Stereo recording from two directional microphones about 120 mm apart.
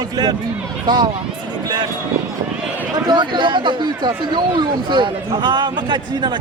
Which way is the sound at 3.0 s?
40° right (ahead or behind).